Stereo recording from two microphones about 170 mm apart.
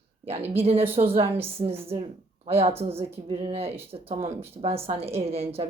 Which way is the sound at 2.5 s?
35° right (ahead or behind).